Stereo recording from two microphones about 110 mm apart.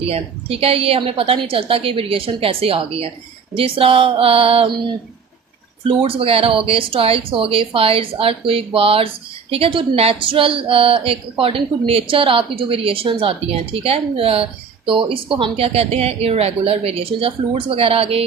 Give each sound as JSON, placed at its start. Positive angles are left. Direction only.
{"t": 0.0, "sound": "speech", "side_deg": -60}
{"t": 5.9, "sound": "speech", "side_deg": -55}